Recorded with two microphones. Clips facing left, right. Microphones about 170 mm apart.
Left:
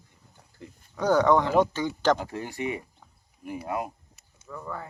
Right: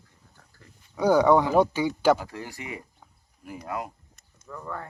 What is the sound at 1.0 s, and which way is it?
Speech, 10° right (ahead or behind).